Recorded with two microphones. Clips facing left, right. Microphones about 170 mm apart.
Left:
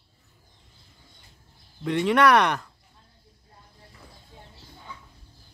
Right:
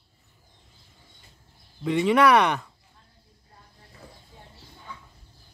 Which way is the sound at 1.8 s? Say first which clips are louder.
Right 1 dB; centre (ahead or behind).